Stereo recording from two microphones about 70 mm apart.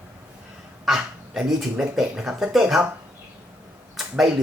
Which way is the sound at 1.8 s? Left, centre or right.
Centre.